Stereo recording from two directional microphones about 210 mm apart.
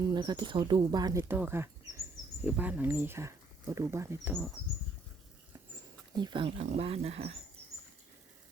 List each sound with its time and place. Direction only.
0.1 s speech: 20° right (ahead or behind)
6.1 s speech: 20° right (ahead or behind)